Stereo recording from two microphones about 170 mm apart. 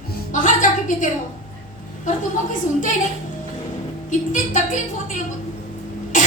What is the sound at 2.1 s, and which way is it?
Speech, 50° left (ahead or behind).